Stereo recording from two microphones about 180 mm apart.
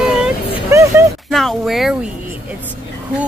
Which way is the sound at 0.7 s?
15° right (ahead or behind).